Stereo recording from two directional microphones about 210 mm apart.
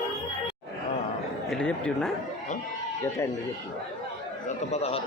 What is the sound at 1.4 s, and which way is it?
Speech, 5° left (ahead or behind).